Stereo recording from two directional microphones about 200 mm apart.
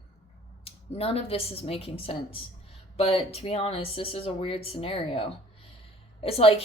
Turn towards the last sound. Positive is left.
turn(degrees=30)  # may be behind; listen again after turning